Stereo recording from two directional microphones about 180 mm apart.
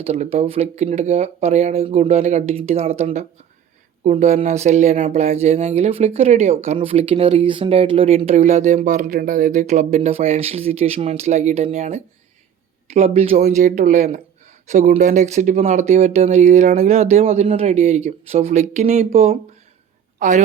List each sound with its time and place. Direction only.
0.0 s a woman's voice: 35° right (ahead or behind)